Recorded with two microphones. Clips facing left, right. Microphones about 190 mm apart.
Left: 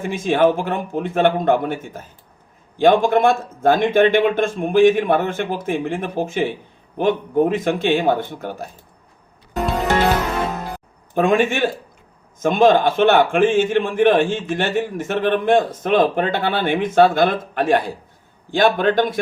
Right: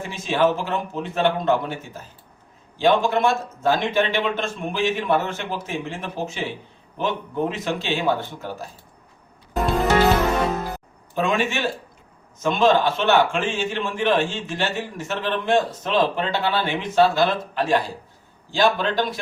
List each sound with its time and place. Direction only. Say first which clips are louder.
0.1 s a man's voice: left 4 dB; 50° left (ahead or behind)
11.1 s a man's voice: left 6 dB; 50° left (ahead or behind)